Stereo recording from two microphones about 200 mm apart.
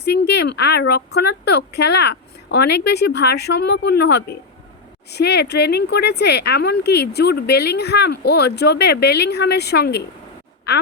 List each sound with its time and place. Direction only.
0.0 s speech: 55° left (ahead or behind)